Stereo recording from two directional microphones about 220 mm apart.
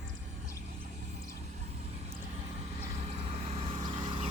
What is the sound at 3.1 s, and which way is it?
Vehicle, 30° right (ahead or behind).